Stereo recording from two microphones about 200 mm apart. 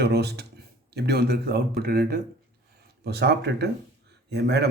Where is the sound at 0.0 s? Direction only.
55° right (ahead or behind).